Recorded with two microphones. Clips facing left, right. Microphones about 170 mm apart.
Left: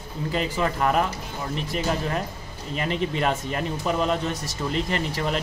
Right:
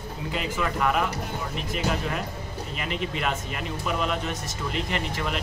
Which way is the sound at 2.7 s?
40° left (ahead or behind).